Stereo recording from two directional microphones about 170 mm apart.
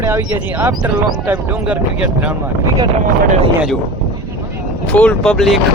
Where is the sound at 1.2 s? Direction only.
10° right (ahead or behind).